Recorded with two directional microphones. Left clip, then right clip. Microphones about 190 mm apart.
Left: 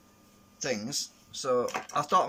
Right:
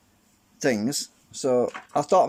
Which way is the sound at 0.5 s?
45° right (ahead or behind).